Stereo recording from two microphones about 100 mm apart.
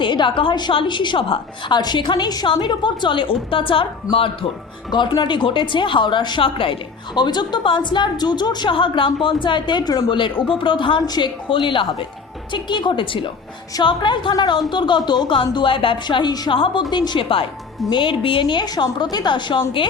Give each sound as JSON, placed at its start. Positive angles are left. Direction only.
{"t": 0.0, "sound": "a woman's voice", "side_deg": 55}
{"t": 4.9, "sound": "speech", "side_deg": 50}
{"t": 11.4, "sound": "a woman's voice", "side_deg": 55}
{"t": 16.5, "sound": "a woman's voice", "side_deg": 60}